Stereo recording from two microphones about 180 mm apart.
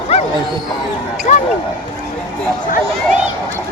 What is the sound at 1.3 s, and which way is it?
Speech, 40° left (ahead or behind).